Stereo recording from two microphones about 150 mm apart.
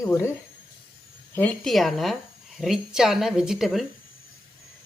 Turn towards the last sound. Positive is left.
turn(degrees=0)  # may be behind; listen again after turning